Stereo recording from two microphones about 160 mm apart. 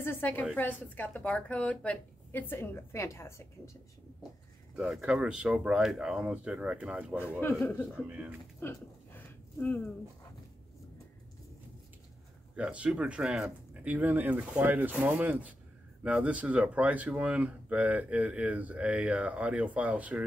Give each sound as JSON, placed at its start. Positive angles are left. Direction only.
{"t": 0.0, "sound": "a woman's voice", "side_deg": 15}
{"t": 4.7, "sound": "speech", "side_deg": 0}
{"t": 7.2, "sound": "a woman's voice", "side_deg": 10}
{"t": 8.5, "sound": "a sound", "side_deg": 15}
{"t": 12.5, "sound": "speech", "side_deg": -5}